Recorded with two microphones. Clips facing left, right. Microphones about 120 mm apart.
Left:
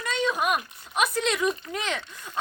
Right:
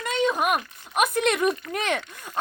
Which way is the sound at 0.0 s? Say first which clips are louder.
Right 3 dB; 55° right (ahead or behind).